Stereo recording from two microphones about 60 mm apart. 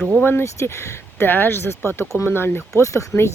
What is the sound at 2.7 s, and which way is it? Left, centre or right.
Speech, left.